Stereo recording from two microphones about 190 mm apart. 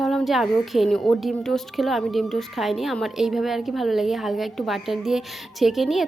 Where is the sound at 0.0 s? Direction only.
Centre (ahead or behind).